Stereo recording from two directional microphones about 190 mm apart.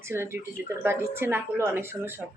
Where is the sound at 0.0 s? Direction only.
10° right (ahead or behind).